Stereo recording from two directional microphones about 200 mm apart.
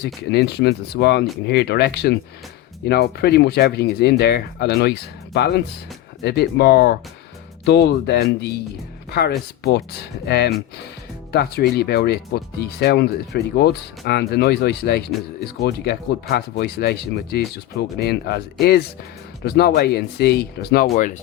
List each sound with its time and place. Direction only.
0.0 s speech: 55° left (ahead or behind)
9.6 s speech: 55° left (ahead or behind)